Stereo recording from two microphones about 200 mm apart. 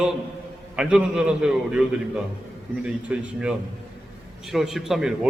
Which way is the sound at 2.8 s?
5° right (ahead or behind).